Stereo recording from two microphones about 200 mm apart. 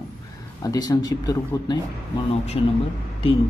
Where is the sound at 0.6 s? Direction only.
20° left (ahead or behind).